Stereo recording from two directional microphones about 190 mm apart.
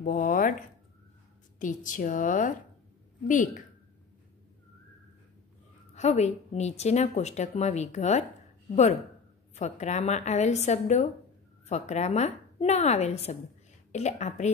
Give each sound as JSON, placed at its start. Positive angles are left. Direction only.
{"t": 0.0, "sound": "a sound", "side_deg": 45}
{"t": 1.6, "sound": "a woman's voice", "side_deg": 45}
{"t": 5.9, "sound": "a woman's voice", "side_deg": 35}
{"t": 9.6, "sound": "a woman's voice", "side_deg": 35}